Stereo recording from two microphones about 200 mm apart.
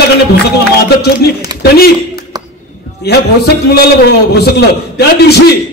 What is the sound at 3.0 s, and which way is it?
Speech, 55° left (ahead or behind).